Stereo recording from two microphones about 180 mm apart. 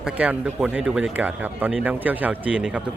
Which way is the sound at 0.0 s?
10° right (ahead or behind).